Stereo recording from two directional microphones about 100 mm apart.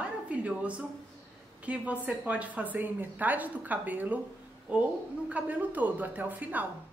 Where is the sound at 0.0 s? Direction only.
15° right (ahead or behind).